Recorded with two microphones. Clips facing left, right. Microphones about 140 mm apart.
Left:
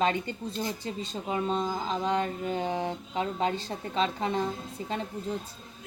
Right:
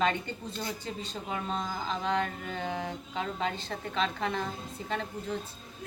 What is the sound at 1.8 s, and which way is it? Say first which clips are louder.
Speech: left 3 dB; 35° left (ahead or behind).